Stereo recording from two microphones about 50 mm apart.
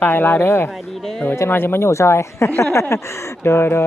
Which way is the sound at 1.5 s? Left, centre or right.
Left.